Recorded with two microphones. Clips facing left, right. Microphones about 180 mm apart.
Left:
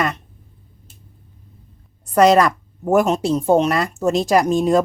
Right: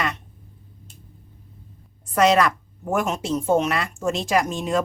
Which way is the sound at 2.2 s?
40° left (ahead or behind).